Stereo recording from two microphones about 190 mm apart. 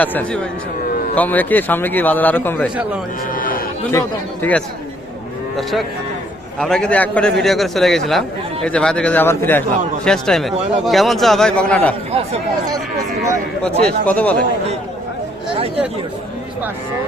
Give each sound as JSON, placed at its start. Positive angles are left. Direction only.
{"t": 0.0, "sound": "a man's voice", "side_deg": 10}
{"t": 3.3, "sound": "a sound", "side_deg": 45}
{"t": 3.9, "sound": "a man's voice", "side_deg": 10}
{"t": 6.6, "sound": "a man's voice", "side_deg": 5}
{"t": 13.7, "sound": "a man's voice", "side_deg": 5}